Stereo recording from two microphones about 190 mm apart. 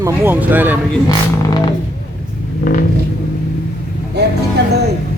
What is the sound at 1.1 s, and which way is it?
Speech, 20° left (ahead or behind).